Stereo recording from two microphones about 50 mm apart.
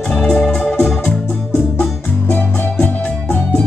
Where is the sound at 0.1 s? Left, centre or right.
Centre.